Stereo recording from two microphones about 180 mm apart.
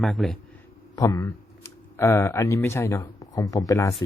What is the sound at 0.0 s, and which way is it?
Speech, centre (ahead or behind).